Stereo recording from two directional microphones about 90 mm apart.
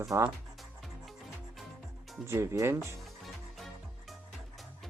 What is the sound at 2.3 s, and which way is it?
Speech, 35° right (ahead or behind).